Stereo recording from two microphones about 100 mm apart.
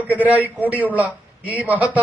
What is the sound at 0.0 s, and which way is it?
Speech, 15° right (ahead or behind).